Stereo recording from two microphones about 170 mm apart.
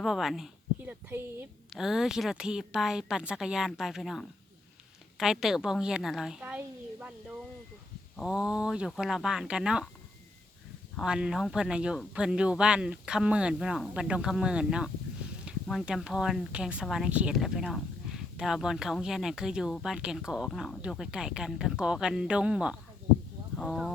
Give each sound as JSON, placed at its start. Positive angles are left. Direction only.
{"t": 0.0, "sound": "a sound", "side_deg": 0}
{"t": 1.7, "sound": "a woman's voice", "side_deg": -5}
{"t": 10.9, "sound": "speech", "side_deg": -5}